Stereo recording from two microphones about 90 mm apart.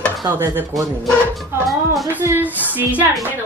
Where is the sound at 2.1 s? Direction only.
25° right (ahead or behind).